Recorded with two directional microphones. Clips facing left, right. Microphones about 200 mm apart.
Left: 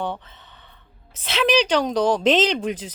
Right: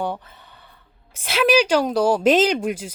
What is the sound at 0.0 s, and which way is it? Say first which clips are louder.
Speech: right 2 dB; 10° right (ahead or behind).